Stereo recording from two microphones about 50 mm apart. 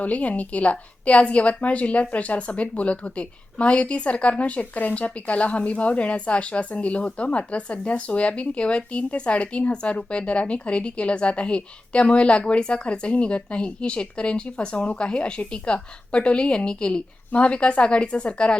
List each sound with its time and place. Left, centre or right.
0.0 s a woman's voice: left